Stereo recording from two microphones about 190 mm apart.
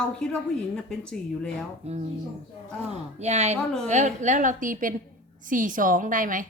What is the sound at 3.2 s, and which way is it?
A woman's voice, 35° right (ahead or behind).